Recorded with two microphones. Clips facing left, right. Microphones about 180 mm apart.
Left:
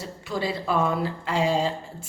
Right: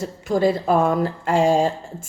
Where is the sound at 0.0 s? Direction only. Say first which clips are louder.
Right 10 dB; 45° right (ahead or behind).